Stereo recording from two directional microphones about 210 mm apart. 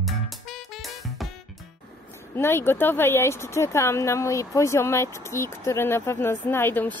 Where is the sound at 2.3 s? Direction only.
10° left (ahead or behind).